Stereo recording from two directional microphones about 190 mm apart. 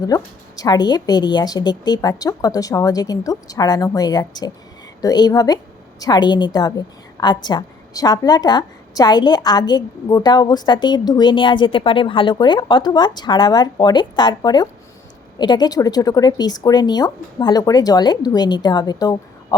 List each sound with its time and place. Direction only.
0.0 s a woman's voice: 20° left (ahead or behind)